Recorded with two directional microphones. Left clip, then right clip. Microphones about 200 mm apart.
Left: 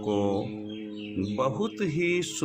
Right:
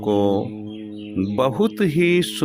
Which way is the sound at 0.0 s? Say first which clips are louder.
Right 8 dB; 35° right (ahead or behind).